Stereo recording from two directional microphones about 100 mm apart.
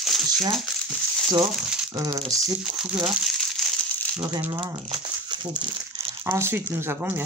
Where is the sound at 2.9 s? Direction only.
10° right (ahead or behind).